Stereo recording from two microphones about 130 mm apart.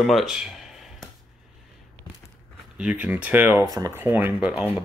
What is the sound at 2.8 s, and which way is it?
Speech, 10° right (ahead or behind).